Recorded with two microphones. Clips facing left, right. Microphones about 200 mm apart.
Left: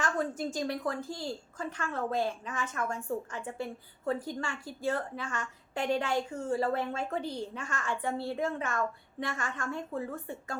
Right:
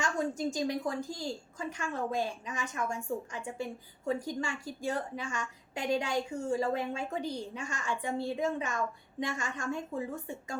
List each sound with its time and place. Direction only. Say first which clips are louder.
0.0 s a woman's voice: even; 15° right (ahead or behind)